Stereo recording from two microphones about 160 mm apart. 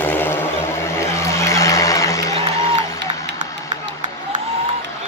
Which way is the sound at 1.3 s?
20° left (ahead or behind).